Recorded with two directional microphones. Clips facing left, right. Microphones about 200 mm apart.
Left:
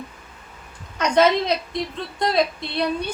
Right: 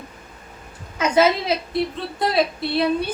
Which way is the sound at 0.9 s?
5° right (ahead or behind).